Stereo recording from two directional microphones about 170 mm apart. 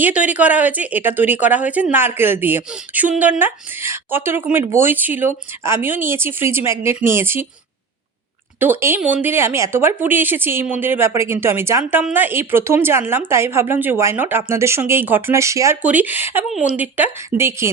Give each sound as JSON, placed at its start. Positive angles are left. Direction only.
{"t": 0.0, "sound": "a woman's voice", "side_deg": -10}
{"t": 8.5, "sound": "a woman's voice", "side_deg": -10}